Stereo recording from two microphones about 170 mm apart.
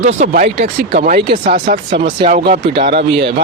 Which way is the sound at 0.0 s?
40° right (ahead or behind).